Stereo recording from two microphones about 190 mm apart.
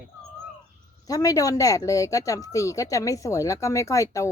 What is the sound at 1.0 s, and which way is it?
Speech, 20° left (ahead or behind).